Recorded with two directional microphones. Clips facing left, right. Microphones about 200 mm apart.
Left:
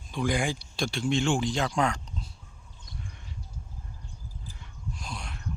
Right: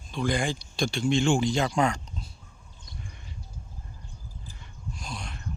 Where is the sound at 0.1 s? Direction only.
10° left (ahead or behind).